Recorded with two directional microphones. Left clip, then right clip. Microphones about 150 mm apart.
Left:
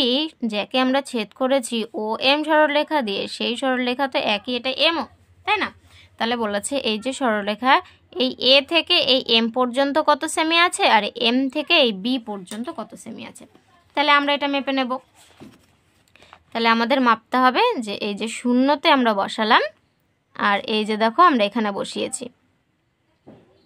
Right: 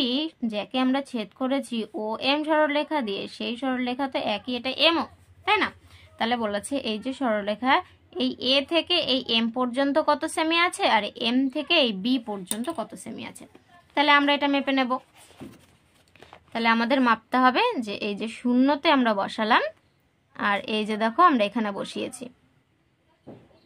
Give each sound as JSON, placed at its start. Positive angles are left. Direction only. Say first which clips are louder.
{"t": 0.0, "sound": "a woman's voice", "louder": "left 6 dB", "side_deg": 55}
{"t": 4.6, "sound": "a woman's voice", "louder": "right 1 dB", "side_deg": 35}
{"t": 6.1, "sound": "a woman's voice", "louder": "left 3 dB", "side_deg": 40}
{"t": 12.5, "sound": "a woman's voice", "louder": "even", "side_deg": 20}
{"t": 16.3, "sound": "a woman's voice", "louder": "left 4 dB", "side_deg": 35}